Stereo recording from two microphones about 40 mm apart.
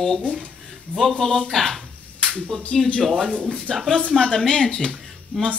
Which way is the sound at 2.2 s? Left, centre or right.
Centre.